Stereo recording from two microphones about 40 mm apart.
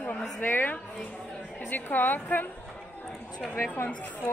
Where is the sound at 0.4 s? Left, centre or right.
Left.